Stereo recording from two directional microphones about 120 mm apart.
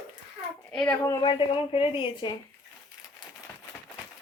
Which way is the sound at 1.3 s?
45° left (ahead or behind).